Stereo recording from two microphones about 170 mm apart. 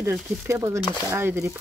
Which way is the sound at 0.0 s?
15° right (ahead or behind).